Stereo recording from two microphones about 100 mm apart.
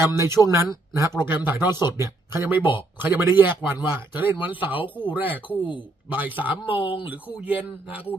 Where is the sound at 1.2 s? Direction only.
20° right (ahead or behind).